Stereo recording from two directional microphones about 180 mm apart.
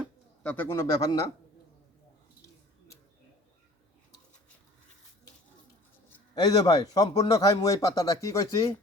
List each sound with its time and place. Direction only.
0.4 s a man's voice: 10° left (ahead or behind)
6.3 s speech: 20° left (ahead or behind)